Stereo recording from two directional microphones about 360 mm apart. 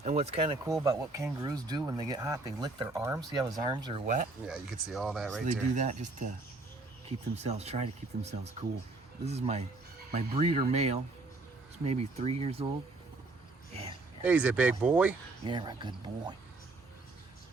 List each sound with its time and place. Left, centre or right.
0.0 s speech: centre
4.4 s speech: centre
5.7 s speech: centre
7.3 s speech: centre
14.2 s speech: centre